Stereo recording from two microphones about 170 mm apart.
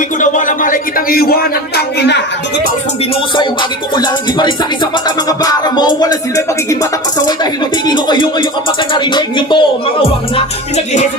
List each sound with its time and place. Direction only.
0.2 s speech: 50° left (ahead or behind); by 2.2 s 85° left
3.3 s music: 25° left (ahead or behind)
7.9 s music: 25° left (ahead or behind)
10.3 s music: 40° left (ahead or behind)